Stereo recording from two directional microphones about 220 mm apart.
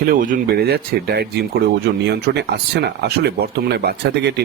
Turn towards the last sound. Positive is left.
turn(degrees=-50)  # may be behind; listen again after turning